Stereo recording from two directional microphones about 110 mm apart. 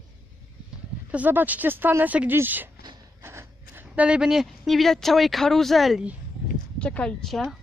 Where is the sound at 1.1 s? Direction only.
15° right (ahead or behind).